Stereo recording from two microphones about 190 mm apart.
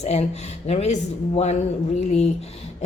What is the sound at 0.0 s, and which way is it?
Speech, 35° left (ahead or behind).